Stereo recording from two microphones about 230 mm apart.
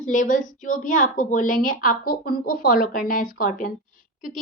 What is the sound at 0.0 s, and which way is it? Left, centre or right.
A woman's voice, left.